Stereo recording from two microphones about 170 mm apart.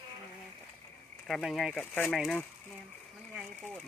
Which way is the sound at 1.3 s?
Centre (ahead or behind).